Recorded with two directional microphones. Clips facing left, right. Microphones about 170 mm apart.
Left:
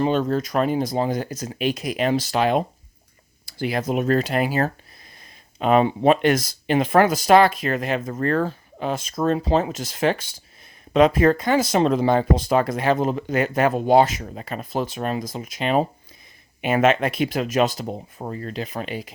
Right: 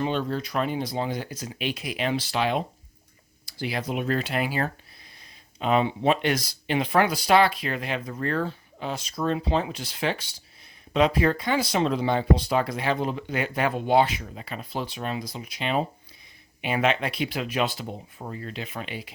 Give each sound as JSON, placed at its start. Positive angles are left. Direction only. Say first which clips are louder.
{"t": 0.0, "sound": "speech", "louder": "left 6 dB", "side_deg": 45}